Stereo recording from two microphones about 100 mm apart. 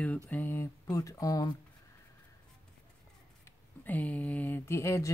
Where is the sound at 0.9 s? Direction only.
35° left (ahead or behind).